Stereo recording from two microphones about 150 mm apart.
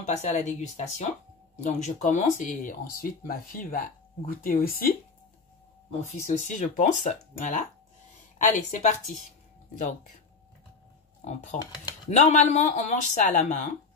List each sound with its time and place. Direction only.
0.0 s speech: 50° left (ahead or behind); by 4.9 s 75° left (ahead or behind)
5.9 s speech: 55° left (ahead or behind)
11.6 s speech: 25° left (ahead or behind)
12.1 s speech: 50° left (ahead or behind)